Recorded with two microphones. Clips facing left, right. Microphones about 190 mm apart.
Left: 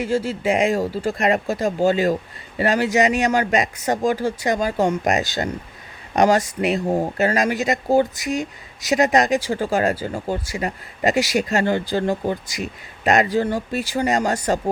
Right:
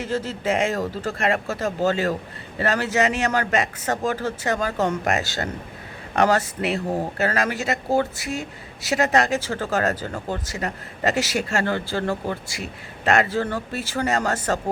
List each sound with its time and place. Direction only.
0.0 s speech: 10° left (ahead or behind)